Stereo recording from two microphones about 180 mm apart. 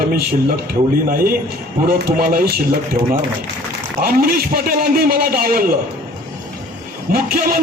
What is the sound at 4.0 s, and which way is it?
A man's voice, 55° right (ahead or behind).